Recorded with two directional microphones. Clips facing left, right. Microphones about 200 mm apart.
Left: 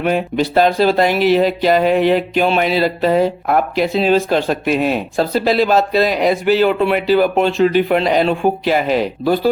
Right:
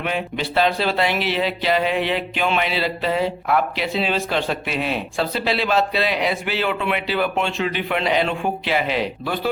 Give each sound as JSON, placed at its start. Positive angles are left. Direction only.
{"t": 0.0, "sound": "speech", "side_deg": 45}